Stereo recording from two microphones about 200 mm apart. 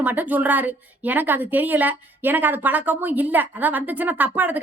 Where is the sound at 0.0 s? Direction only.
10° right (ahead or behind).